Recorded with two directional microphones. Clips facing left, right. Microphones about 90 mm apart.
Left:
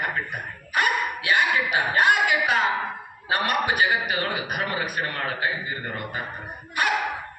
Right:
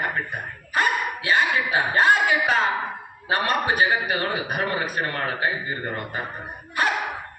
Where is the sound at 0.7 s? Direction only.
25° right (ahead or behind).